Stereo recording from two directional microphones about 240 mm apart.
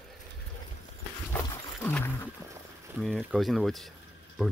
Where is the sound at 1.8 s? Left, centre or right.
Centre.